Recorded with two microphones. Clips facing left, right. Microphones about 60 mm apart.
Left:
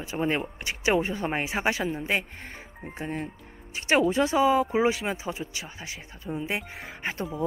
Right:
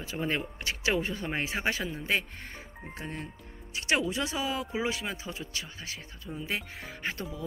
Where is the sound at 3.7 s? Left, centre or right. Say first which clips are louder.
Left 6 dB; left.